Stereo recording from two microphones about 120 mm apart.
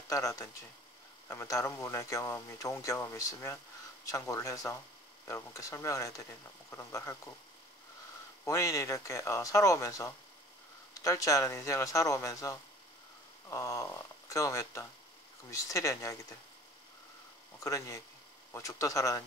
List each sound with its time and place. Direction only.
0.1 s speech: 25° left (ahead or behind)
8.5 s speech: 25° left (ahead or behind)
17.6 s speech: 25° left (ahead or behind)